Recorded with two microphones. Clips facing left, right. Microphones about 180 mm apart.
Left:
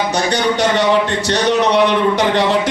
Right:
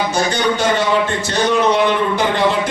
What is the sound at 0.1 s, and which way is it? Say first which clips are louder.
A man's voice: left 1 dB; 70° left (ahead or behind).